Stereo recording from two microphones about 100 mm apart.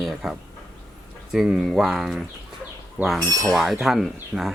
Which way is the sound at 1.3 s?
5° right (ahead or behind).